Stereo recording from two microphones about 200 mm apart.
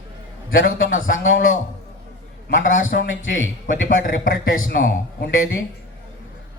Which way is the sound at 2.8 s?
70° left (ahead or behind).